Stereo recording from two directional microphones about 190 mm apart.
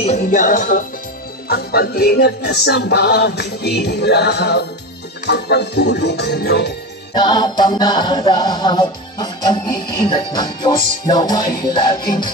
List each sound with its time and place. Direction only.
0.0 s music: 40° left (ahead or behind); by 6.7 s 60° left (ahead or behind)
7.2 s music: 20° left (ahead or behind)